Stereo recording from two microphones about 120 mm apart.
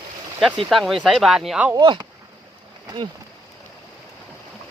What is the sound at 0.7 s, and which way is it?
Speech, centre (ahead or behind).